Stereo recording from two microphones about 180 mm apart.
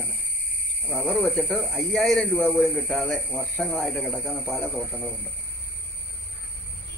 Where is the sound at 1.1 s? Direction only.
Centre (ahead or behind).